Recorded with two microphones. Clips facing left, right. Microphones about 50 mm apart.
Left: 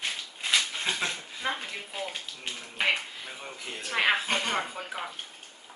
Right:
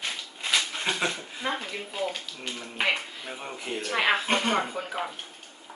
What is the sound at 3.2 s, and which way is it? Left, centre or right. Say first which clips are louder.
Speech: right 4 dB; centre.